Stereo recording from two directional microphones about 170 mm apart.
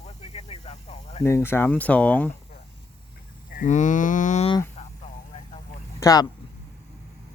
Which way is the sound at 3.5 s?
50° left (ahead or behind).